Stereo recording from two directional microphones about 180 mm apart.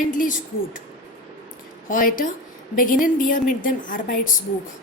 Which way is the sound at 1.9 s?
50° left (ahead or behind).